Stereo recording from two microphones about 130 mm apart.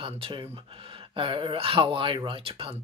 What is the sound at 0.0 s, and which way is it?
Speech, 40° right (ahead or behind).